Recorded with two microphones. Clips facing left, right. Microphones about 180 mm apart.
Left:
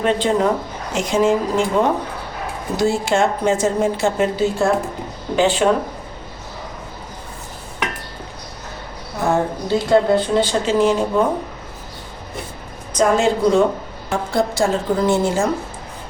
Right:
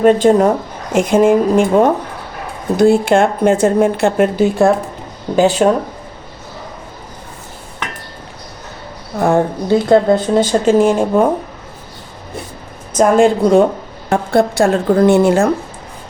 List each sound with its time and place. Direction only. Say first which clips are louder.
0.0 s a woman's voice: right 8 dB; 45° right (ahead or behind)
5.4 s speech: right 5 dB; 40° right (ahead or behind)
9.2 s a woman's voice: right 5 dB; 55° right (ahead or behind)
13.0 s a woman's voice: right 5 dB; 55° right (ahead or behind)